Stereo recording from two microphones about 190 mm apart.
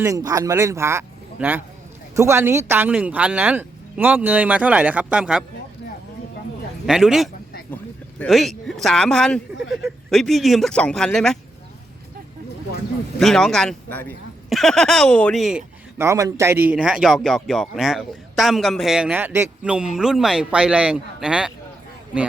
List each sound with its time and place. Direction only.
0.0 s speech: 20° right (ahead or behind)
6.8 s a man's voice: centre (ahead or behind)
13.1 s a man's voice: 5° left (ahead or behind)
16.0 s a man's voice: 15° right (ahead or behind)